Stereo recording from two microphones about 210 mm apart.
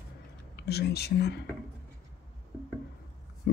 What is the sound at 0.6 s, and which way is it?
Speech, 50° left (ahead or behind).